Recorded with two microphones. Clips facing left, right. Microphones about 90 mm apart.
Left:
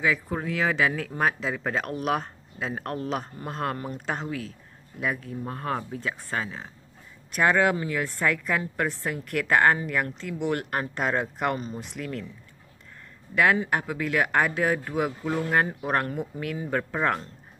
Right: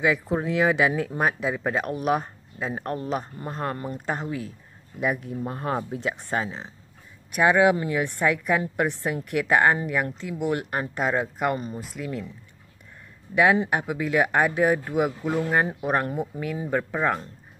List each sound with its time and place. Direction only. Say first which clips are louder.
0.0 s speech: right 3 dB; 15° right (ahead or behind)
7.3 s speech: right 3 dB; 10° right (ahead or behind)
13.3 s speech: right 2 dB; 15° right (ahead or behind)